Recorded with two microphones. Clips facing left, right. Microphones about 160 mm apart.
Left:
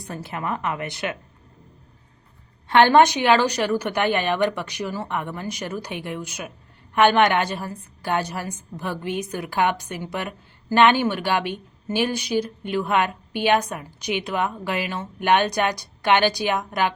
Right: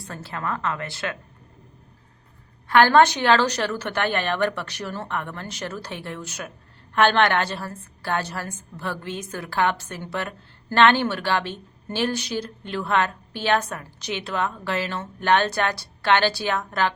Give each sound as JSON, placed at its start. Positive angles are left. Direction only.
{"t": 0.0, "sound": "a woman's voice", "side_deg": 15}
{"t": 2.6, "sound": "a woman's voice", "side_deg": 20}